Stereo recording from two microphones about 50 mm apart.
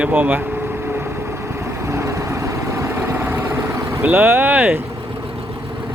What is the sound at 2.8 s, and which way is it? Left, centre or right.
Vehicle, right.